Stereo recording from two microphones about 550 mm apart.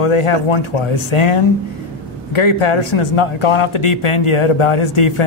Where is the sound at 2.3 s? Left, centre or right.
Left.